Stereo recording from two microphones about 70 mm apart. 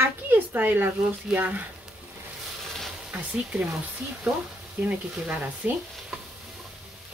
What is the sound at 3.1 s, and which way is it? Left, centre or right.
Speech, right.